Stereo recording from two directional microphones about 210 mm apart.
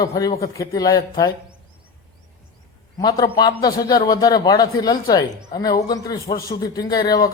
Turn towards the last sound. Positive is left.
turn(degrees=20)  # may be behind; listen again after turning